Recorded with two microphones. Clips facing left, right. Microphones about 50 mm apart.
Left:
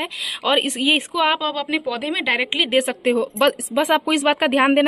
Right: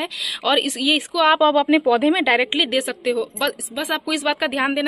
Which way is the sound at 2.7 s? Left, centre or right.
Left.